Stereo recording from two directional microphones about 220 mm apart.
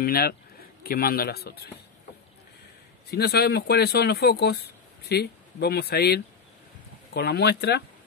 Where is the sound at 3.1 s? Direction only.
45° left (ahead or behind).